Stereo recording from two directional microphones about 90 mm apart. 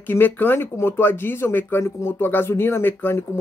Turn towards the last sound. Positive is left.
turn(degrees=25)  # may be behind; listen again after turning